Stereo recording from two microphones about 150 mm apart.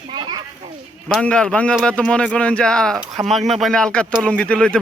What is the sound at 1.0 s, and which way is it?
Speech, 5° left (ahead or behind).